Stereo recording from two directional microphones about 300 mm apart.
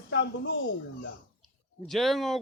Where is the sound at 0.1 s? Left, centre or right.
Left.